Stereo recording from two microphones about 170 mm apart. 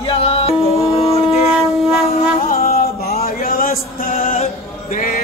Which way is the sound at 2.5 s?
60° left (ahead or behind).